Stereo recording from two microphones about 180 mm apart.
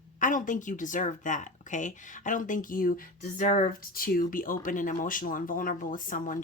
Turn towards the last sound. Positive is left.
turn(degrees=50)  # may be behind; listen again after turning